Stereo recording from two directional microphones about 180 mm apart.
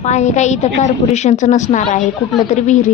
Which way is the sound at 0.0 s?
40° left (ahead or behind).